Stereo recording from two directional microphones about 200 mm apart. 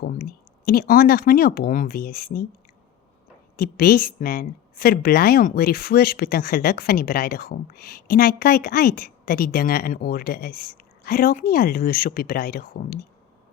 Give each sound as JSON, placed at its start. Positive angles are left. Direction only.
{"t": 0.0, "sound": "a woman's voice", "side_deg": 50}
{"t": 3.6, "sound": "a woman's voice", "side_deg": 45}